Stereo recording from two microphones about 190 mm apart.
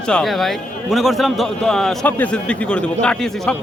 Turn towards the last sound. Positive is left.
turn(degrees=5)  # may be behind; listen again after turning